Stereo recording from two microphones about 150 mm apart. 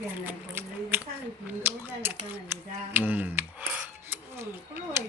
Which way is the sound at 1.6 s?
15° right (ahead or behind).